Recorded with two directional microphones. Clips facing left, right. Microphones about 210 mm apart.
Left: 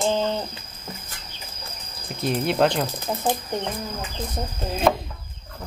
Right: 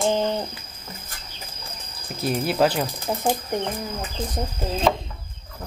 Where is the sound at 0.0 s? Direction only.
15° right (ahead or behind).